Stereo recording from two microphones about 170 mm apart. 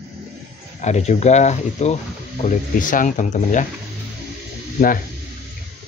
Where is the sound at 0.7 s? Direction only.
40° left (ahead or behind).